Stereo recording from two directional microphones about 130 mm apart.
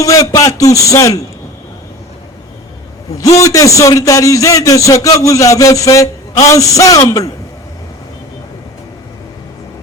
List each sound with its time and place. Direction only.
0.0 s a man's voice: 25° left (ahead or behind)
3.4 s a man's voice: 25° left (ahead or behind)